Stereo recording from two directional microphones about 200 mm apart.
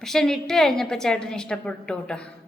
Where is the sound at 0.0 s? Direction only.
Centre (ahead or behind).